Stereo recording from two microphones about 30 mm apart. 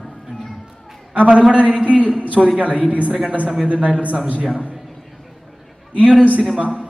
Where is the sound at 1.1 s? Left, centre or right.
Right.